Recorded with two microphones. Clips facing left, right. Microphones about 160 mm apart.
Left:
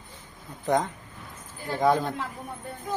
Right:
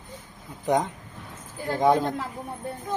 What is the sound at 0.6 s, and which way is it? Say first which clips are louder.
Speech: right 1 dB; 15° right (ahead or behind).